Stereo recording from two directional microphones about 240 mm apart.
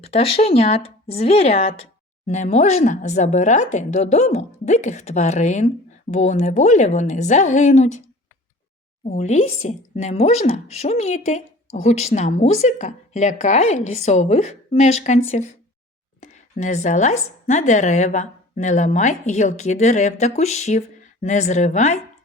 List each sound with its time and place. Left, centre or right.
0.0 s speech: left
9.0 s a woman's voice: left